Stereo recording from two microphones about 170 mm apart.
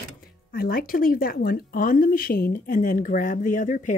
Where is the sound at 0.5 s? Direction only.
60° left (ahead or behind).